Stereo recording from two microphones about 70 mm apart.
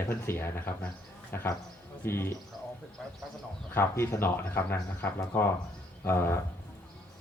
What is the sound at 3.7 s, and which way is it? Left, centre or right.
Speech, left.